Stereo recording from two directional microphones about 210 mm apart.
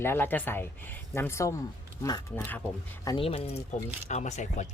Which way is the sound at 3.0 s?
20° left (ahead or behind).